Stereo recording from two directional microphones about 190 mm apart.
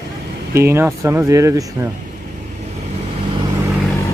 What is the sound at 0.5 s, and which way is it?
Speech, 15° right (ahead or behind).